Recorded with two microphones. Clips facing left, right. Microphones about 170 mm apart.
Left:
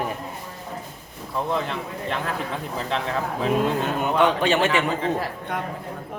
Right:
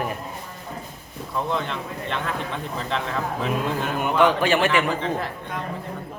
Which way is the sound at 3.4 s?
Centre (ahead or behind).